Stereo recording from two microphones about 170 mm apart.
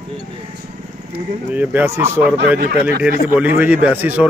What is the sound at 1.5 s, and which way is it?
A man's voice, 10° right (ahead or behind).